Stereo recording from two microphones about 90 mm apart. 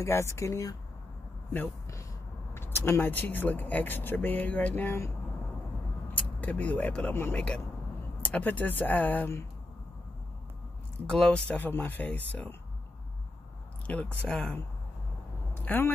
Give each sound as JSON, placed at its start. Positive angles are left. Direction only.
{"t": 0.0, "sound": "speech", "side_deg": 30}
{"t": 2.5, "sound": "speech", "side_deg": 25}
{"t": 7.3, "sound": "speech", "side_deg": 10}
{"t": 11.1, "sound": "speech", "side_deg": 5}
{"t": 11.4, "sound": "speech", "side_deg": 20}
{"t": 13.8, "sound": "speech", "side_deg": 10}
{"t": 15.5, "sound": "a sound", "side_deg": 25}